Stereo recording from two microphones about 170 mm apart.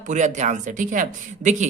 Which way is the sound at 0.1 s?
45° right (ahead or behind).